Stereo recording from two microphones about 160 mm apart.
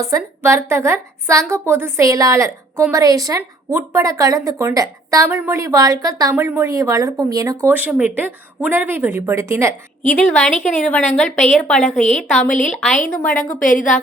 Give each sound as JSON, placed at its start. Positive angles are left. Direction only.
{"t": 0.1, "sound": "a woman's voice", "side_deg": -15}
{"t": 7.7, "sound": "a woman's voice", "side_deg": -10}
{"t": 10.0, "sound": "a woman's voice", "side_deg": 5}
{"t": 12.5, "sound": "a woman's voice", "side_deg": 50}
{"t": 13.1, "sound": "a woman's voice", "side_deg": 5}
{"t": 13.6, "sound": "a woman's voice", "side_deg": 55}